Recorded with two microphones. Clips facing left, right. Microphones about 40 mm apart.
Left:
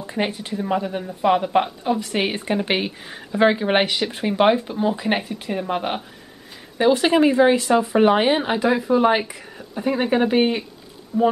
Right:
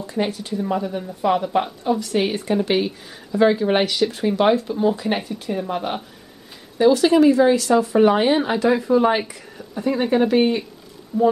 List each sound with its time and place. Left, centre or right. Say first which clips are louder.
0.0 s speech: right 1 dB; left
6.8 s speech: right 2 dB; left